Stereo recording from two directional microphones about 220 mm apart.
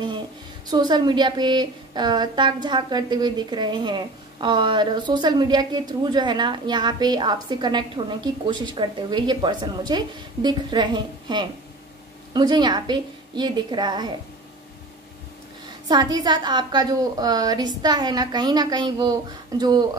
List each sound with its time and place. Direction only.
0.7 s a woman's voice: 20° right (ahead or behind)
15.9 s a woman's voice: 20° right (ahead or behind)